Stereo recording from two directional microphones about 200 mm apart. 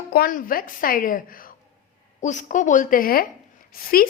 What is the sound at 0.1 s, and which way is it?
A woman's voice, 45° left (ahead or behind).